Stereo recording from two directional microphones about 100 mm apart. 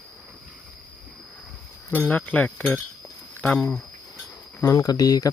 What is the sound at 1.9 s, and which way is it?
Speech, 20° left (ahead or behind).